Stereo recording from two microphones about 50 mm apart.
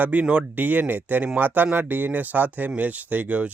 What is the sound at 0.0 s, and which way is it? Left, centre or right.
Speech, right.